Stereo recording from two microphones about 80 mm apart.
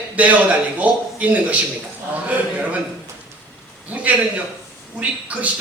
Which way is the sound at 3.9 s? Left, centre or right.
Centre.